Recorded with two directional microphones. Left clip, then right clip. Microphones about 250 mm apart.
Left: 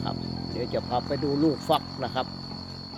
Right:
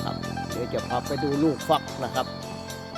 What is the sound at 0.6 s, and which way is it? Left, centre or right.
Speech, centre.